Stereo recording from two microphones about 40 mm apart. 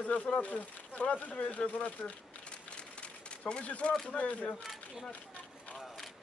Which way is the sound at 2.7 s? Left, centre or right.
Left.